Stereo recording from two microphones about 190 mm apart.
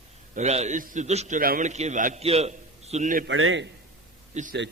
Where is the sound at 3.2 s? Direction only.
90° right.